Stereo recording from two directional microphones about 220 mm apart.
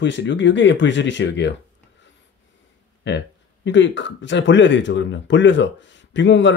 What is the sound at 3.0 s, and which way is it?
Speech, 55° left (ahead or behind).